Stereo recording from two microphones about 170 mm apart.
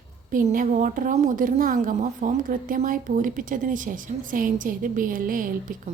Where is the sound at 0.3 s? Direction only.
55° right (ahead or behind).